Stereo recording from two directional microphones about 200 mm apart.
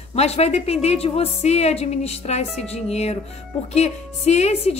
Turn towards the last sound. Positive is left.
turn(degrees=35)  # may be behind; listen again after turning